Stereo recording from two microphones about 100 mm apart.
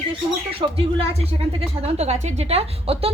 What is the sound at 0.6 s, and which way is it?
A woman's voice, 80° right.